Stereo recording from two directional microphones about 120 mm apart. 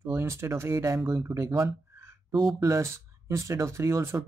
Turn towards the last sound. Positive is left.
turn(degrees=-20)  # may be behind; listen again after turning